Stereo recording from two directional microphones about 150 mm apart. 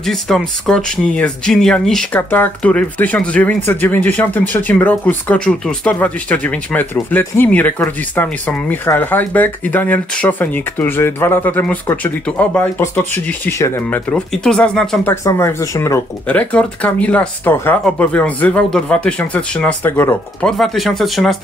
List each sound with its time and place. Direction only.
0.0 s speech: centre (ahead or behind)
15.2 s speech: 20° left (ahead or behind)
16.3 s speech: 10° left (ahead or behind)
20.4 s speech: centre (ahead or behind)